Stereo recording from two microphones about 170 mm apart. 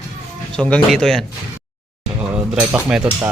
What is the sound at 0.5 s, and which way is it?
Speech, 5° left (ahead or behind).